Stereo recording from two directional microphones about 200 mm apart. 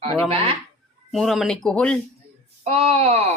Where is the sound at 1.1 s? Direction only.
Centre (ahead or behind).